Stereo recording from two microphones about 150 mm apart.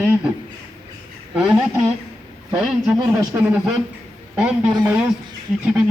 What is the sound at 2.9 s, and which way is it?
Speech, 25° right (ahead or behind).